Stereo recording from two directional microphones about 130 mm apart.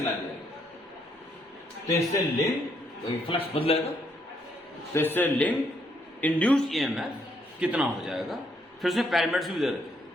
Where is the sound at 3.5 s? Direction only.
45° left (ahead or behind).